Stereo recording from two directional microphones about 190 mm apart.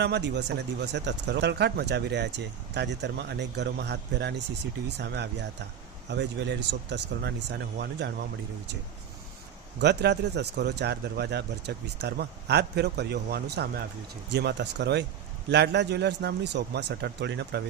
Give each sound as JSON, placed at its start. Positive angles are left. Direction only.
{"t": 0.0, "sound": "speech", "side_deg": -65}
{"t": 9.8, "sound": "speech", "side_deg": -65}